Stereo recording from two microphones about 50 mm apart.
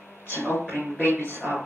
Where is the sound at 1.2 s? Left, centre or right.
Right.